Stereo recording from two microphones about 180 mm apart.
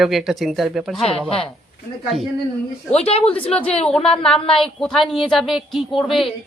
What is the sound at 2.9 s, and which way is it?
Speech, 35° left (ahead or behind).